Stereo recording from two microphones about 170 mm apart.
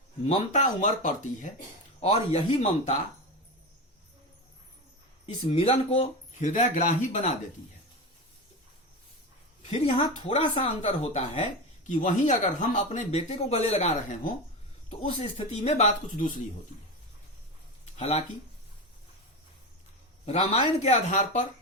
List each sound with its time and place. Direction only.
0.3 s speech: 45° left (ahead or behind)
5.2 s speech: 35° left (ahead or behind)
9.6 s speech: 40° left (ahead or behind)
15.2 s speech: 35° left (ahead or behind)
17.9 s speech: 40° left (ahead or behind)
20.5 s speech: 40° left (ahead or behind)